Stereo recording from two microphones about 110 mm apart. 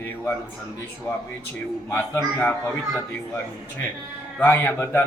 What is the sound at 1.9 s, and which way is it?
Speech, 20° left (ahead or behind).